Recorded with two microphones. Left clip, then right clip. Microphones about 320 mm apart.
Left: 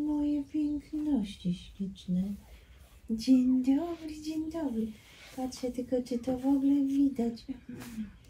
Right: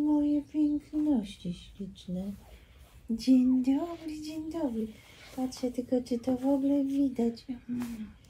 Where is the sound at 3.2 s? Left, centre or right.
Centre.